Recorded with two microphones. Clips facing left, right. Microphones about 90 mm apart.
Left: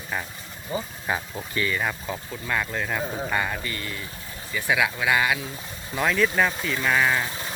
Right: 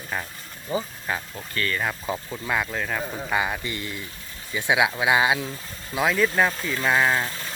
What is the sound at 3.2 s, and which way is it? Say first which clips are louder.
Speech: right 1 dB; 10° right (ahead or behind).